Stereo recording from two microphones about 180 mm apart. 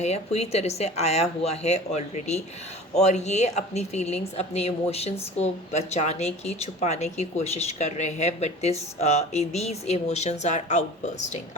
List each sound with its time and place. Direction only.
0.0 s speech: 35° left (ahead or behind)